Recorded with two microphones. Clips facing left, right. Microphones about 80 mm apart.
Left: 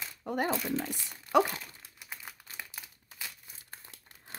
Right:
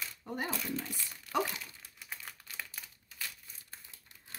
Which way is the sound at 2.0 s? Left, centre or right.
Centre.